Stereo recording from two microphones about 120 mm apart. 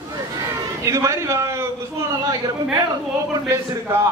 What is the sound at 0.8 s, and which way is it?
Speech, 25° right (ahead or behind).